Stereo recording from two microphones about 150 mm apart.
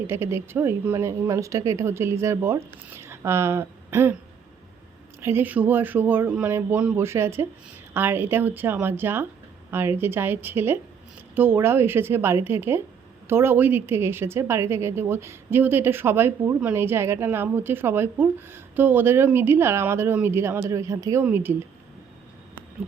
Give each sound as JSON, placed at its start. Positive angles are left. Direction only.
{"t": 0.1, "sound": "a woman's voice", "side_deg": -15}
{"t": 5.2, "sound": "a woman's voice", "side_deg": -15}